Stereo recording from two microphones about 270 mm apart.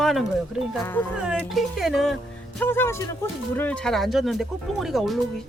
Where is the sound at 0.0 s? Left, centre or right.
Centre.